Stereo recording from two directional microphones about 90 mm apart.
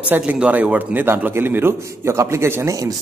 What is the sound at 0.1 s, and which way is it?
A man's voice, 15° right (ahead or behind).